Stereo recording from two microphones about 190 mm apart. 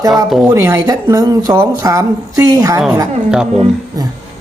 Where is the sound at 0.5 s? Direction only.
15° right (ahead or behind).